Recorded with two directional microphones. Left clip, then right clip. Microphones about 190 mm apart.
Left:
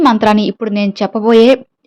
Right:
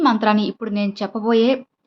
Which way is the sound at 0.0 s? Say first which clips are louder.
Left 7 dB; 40° left (ahead or behind).